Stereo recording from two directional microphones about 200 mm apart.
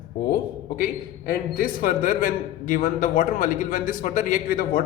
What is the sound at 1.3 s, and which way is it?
A man's voice, 45° left (ahead or behind).